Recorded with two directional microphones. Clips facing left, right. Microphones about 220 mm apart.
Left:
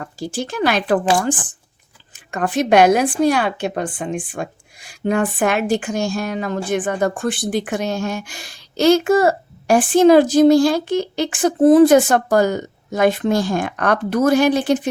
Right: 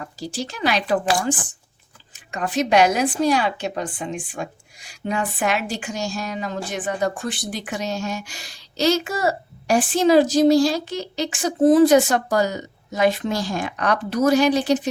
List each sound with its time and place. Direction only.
0.2 s speech: 50° left (ahead or behind)
2.1 s speech: 55° left (ahead or behind)